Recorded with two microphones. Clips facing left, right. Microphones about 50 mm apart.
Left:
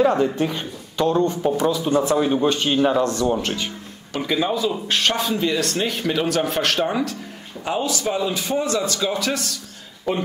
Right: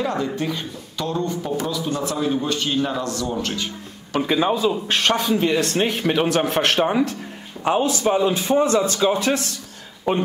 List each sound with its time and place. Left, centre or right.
0.0 s a man's voice: centre
3.3 s a man's voice: centre
4.3 s a man's voice: right
5.1 s speech: centre
5.4 s a man's voice: right